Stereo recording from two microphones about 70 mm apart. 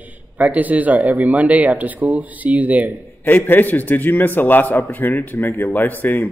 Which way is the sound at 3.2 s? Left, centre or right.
Left.